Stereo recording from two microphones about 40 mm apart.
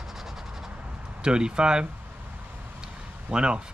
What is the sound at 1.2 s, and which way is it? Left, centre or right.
Speech, right.